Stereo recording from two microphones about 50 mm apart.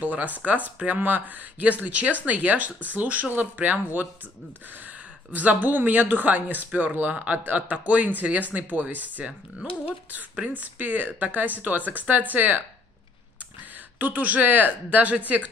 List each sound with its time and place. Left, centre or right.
0.0 s speech: right
5.3 s speech: right
10.3 s speech: right
13.9 s speech: right